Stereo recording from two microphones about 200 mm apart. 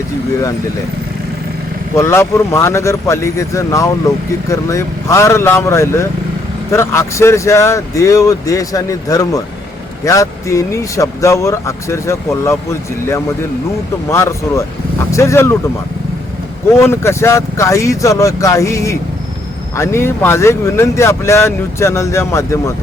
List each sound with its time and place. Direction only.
2.0 s speech: 15° left (ahead or behind)
14.1 s speech: 15° left (ahead or behind)
16.7 s speech: 15° left (ahead or behind)